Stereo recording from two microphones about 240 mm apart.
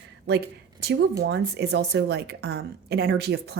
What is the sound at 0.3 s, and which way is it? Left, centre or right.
Speech, right.